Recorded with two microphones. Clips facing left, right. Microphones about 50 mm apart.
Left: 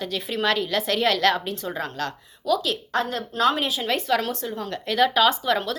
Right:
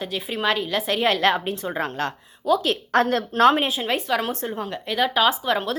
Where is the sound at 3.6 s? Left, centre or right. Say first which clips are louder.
Right 2 dB; right.